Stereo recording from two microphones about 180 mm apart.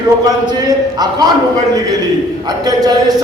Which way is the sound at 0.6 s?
20° right (ahead or behind).